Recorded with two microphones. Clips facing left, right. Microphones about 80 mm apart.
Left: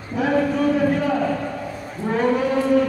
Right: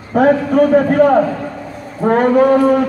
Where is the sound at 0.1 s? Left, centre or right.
Right.